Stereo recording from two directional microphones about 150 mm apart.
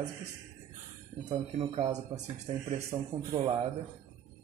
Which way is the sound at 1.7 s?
50° right (ahead or behind).